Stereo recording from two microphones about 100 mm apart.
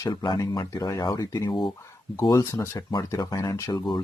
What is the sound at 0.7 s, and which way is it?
Speech, 40° left (ahead or behind).